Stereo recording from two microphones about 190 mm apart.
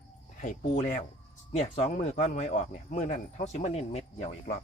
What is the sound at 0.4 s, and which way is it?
Speech, 40° left (ahead or behind).